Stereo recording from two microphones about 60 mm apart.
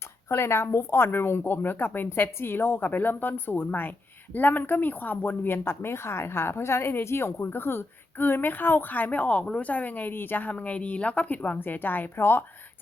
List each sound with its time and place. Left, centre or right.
0.3 s speech: left